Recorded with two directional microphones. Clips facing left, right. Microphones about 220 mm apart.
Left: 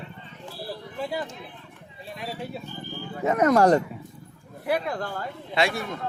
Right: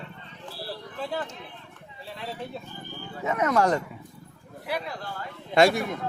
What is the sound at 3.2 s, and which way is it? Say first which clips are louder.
Speech: left 5 dB; 40° left (ahead or behind).